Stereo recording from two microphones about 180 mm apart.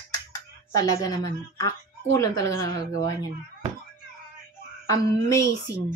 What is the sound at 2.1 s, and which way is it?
Speech, 20° left (ahead or behind).